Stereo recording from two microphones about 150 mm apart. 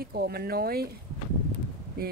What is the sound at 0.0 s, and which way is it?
Speech, 90° right.